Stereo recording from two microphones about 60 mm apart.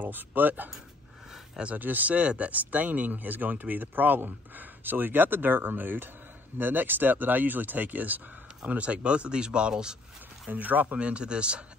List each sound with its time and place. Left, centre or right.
0.0 s speech: right; by 9.9 s centre
10.5 s speech: right